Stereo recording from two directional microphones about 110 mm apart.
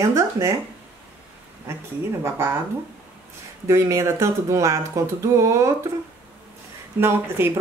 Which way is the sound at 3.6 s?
25° right (ahead or behind).